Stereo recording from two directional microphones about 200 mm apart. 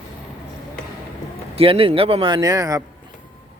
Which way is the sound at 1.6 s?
30° right (ahead or behind).